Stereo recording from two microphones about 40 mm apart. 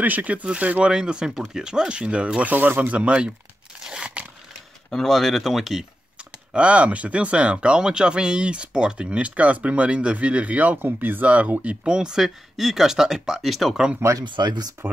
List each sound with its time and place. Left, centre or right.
0.0 s speech: right
0.8 s speech: right
2.4 s speech: right
2.8 s speech: right
3.8 s crunch: centre
4.9 s speech: centre
6.5 s speech: right
10.8 s speech: right
11.2 s speech: right
11.8 s speech: centre
12.2 s speech: centre
13.5 s speech: centre